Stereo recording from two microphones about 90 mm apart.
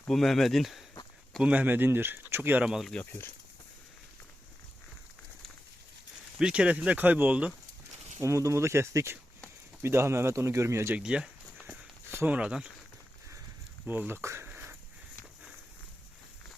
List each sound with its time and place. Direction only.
0.1 s speech: 5° left (ahead or behind)
1.4 s speech: 15° right (ahead or behind)
2.6 s speech: 5° right (ahead or behind)
3.0 s speech: 25° left (ahead or behind)
6.4 s speech: 10° right (ahead or behind)
8.2 s speech: 35° right (ahead or behind)
10.9 s a sound: 10° right (ahead or behind)
11.6 s a sound: 20° right (ahead or behind)
12.4 s speech: 10° right (ahead or behind)
13.8 s a sound: 20° right (ahead or behind)